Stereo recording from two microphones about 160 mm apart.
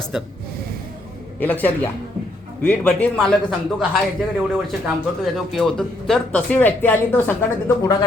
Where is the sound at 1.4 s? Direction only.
10° left (ahead or behind).